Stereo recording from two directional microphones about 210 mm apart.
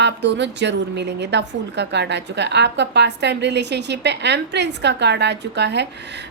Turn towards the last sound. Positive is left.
turn(degrees=-55)  # may be behind; listen again after turning